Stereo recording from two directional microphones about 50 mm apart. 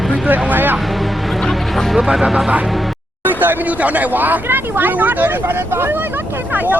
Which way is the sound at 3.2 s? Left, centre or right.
Right.